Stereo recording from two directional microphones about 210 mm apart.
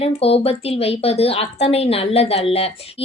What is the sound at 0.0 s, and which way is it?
A woman's voice, 30° left (ahead or behind).